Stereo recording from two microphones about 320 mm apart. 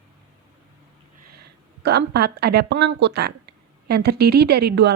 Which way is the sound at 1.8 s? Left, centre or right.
Right.